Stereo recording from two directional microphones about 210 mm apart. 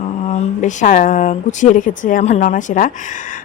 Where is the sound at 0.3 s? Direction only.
35° left (ahead or behind).